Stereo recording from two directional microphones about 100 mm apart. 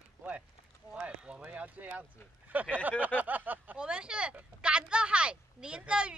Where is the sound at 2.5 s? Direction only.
15° right (ahead or behind).